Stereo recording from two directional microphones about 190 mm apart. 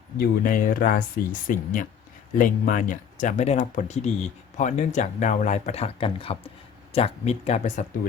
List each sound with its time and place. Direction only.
0.2 s speech: 45° left (ahead or behind)